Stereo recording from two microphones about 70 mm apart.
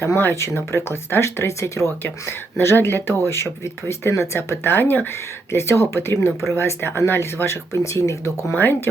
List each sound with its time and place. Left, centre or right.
0.0 s speech: left
8.5 s speech: left